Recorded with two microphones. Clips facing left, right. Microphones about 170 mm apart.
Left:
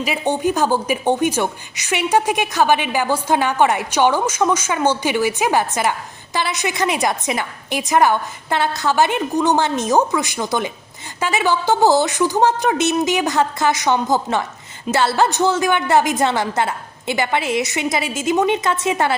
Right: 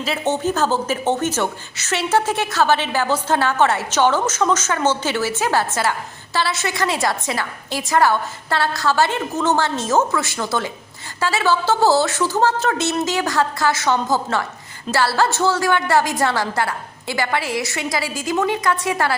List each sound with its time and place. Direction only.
0.0 s a woman's voice: 15° left (ahead or behind)